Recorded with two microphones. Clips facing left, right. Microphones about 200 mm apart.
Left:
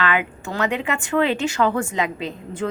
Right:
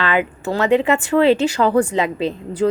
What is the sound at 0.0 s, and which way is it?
A woman's voice, 35° right (ahead or behind).